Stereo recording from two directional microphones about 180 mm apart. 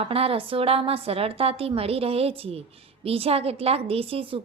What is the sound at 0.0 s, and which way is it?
A woman's voice, 35° right (ahead or behind).